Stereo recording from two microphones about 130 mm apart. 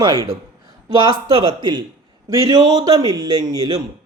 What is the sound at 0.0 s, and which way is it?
Speech, 30° right (ahead or behind).